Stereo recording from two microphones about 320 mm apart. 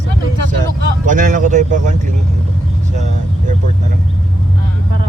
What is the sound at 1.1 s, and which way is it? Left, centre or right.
Vehicle, right.